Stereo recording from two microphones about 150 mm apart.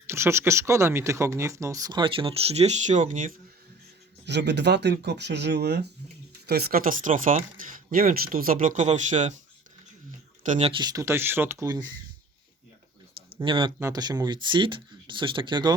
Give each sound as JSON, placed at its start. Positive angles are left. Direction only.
{"t": 0.1, "sound": "speech", "side_deg": -15}
{"t": 4.7, "sound": "speech", "side_deg": -90}
{"t": 10.6, "sound": "speech", "side_deg": -35}
{"t": 13.3, "sound": "speech", "side_deg": -35}
{"t": 13.7, "sound": "speech", "side_deg": -20}